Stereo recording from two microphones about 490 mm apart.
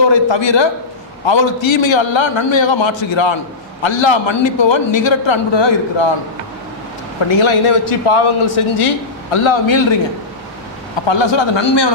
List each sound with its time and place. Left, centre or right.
0.1 s a man's voice: left
7.2 s a man's voice: left
11.1 s a man's voice: left